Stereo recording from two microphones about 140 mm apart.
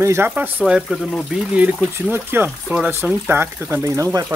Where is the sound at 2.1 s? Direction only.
15° right (ahead or behind).